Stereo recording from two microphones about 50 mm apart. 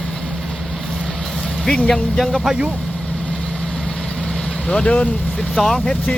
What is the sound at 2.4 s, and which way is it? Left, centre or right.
Speech, centre.